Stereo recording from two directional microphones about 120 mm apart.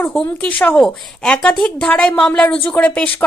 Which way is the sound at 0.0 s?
15° left (ahead or behind).